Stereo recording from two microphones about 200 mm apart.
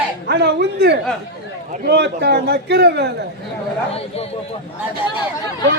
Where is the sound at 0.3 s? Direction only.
55° right (ahead or behind).